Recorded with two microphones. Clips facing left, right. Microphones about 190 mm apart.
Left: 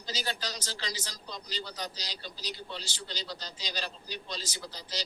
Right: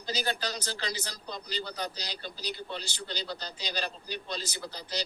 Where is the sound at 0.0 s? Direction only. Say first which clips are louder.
Right 4 dB; 60° right (ahead or behind).